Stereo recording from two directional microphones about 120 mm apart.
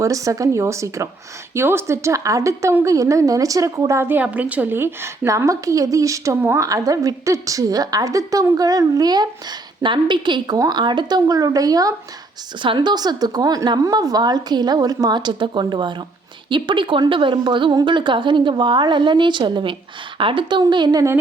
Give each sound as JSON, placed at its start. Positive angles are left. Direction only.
{"t": 0.0, "sound": "a woman's voice", "side_deg": -25}